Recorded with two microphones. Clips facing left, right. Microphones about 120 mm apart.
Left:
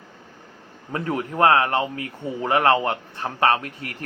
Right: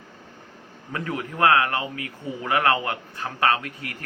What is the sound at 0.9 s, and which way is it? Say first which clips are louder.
Speech: left 4 dB; 30° left (ahead or behind).